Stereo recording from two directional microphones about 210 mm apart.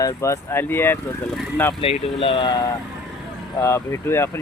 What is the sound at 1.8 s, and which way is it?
Speech, 25° left (ahead or behind).